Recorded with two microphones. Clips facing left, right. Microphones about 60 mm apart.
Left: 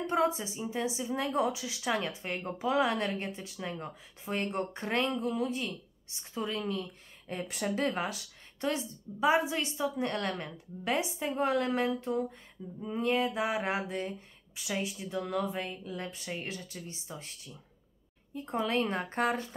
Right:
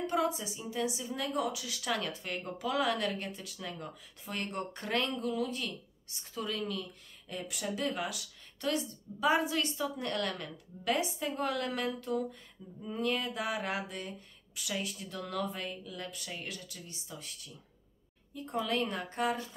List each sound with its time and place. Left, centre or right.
0.0 s a woman's voice: left
15.8 s a woman's voice: left
18.3 s a woman's voice: left